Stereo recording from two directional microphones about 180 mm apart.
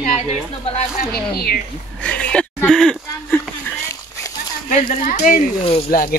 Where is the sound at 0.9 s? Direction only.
55° left (ahead or behind).